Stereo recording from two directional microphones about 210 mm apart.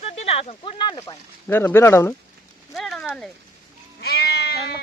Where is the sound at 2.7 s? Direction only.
Centre (ahead or behind).